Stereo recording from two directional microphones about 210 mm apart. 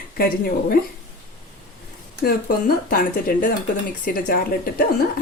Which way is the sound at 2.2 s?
45° left (ahead or behind).